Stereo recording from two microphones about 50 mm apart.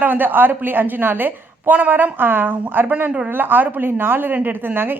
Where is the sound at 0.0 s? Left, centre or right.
Right.